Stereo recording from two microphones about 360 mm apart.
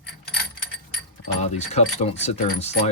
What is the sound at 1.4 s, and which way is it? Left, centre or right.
Speech, centre.